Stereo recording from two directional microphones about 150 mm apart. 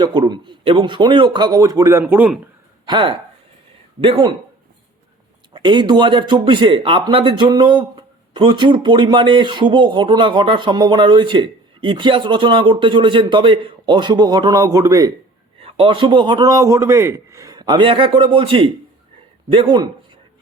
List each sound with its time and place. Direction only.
0.0 s a man's voice: 30° right (ahead or behind); by 2.3 s 15° right (ahead or behind)
2.8 s speech: 30° right (ahead or behind)
5.5 s speech: 30° right (ahead or behind)
15.6 s speech: 35° right (ahead or behind)